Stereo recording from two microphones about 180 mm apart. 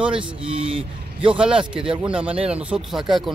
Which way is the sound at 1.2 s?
5° right (ahead or behind).